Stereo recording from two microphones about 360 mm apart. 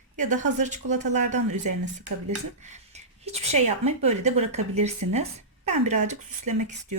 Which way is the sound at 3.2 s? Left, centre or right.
Centre.